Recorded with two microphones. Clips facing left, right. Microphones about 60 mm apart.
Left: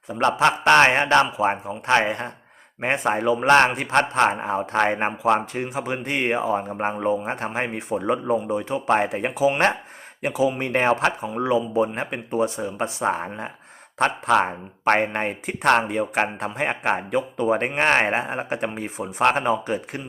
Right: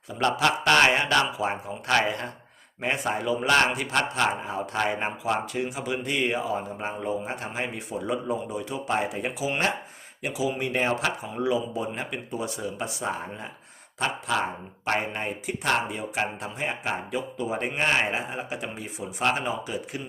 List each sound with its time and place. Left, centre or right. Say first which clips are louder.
0.1 s a man's voice: left 4 dB; left